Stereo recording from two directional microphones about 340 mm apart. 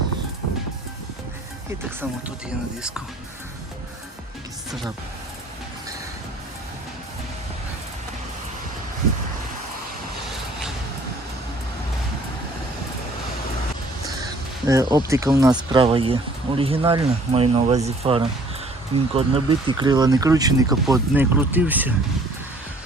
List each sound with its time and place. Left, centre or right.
14.7 s speech: centre